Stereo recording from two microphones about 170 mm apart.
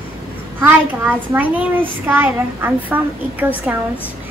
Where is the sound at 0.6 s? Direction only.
10° right (ahead or behind).